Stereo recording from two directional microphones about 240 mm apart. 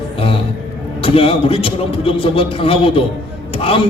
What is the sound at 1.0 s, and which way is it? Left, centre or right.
A man's voice, left.